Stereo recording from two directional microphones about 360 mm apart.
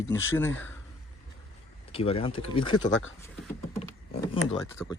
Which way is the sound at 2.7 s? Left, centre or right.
Left.